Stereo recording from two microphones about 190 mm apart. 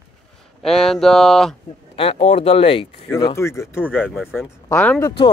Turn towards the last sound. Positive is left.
turn(degrees=10)  # may be behind; listen again after turning